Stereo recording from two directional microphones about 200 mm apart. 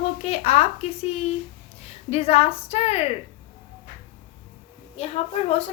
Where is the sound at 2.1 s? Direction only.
30° left (ahead or behind).